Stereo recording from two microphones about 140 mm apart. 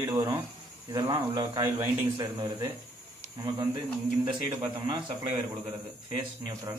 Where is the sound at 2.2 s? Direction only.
25° right (ahead or behind).